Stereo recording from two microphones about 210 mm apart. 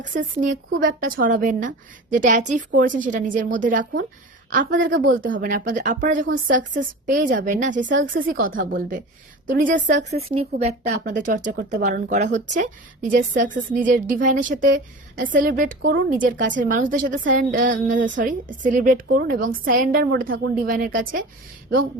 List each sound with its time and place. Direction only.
0.0 s a woman's voice: 35° right (ahead or behind)